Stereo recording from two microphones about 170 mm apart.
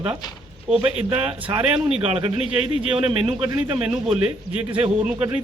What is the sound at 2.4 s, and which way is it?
Speech, 35° left (ahead or behind).